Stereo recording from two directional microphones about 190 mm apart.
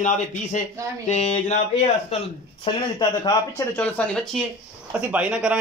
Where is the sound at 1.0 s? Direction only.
40° left (ahead or behind).